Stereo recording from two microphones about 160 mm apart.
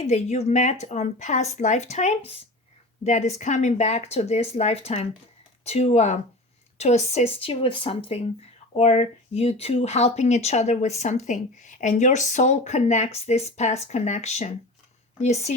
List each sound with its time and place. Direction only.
0.0 s speech: 45° left (ahead or behind)